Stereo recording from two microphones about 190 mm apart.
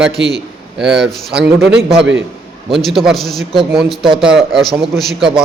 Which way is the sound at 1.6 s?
60° right (ahead or behind).